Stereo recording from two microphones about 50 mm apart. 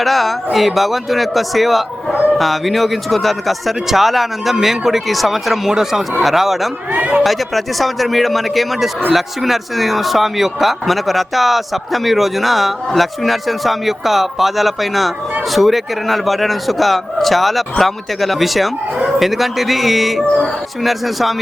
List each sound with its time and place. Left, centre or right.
0.0 s a man's voice: centre
6.9 s speech: right
7.2 s a man's voice: centre